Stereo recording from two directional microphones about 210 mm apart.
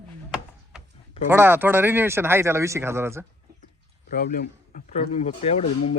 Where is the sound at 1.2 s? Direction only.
10° right (ahead or behind).